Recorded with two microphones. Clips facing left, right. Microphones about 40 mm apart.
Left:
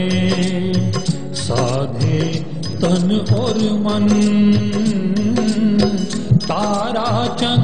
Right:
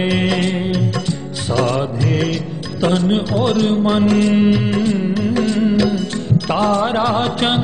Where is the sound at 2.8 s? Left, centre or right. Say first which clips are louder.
Right 1 dB; right.